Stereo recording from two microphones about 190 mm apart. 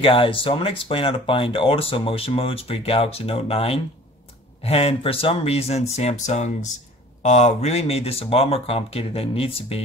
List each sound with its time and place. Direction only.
0.0 s speech: 30° left (ahead or behind)